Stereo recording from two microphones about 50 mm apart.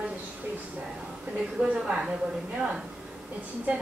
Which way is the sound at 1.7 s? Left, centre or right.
Centre.